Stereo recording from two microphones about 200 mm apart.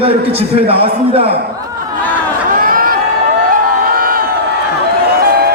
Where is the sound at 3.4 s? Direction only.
45° right (ahead or behind).